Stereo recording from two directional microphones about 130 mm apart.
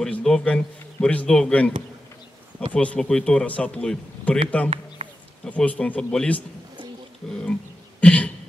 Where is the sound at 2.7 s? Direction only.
10° left (ahead or behind).